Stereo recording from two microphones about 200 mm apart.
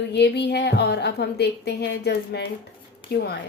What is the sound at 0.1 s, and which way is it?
A woman's voice, 60° left (ahead or behind).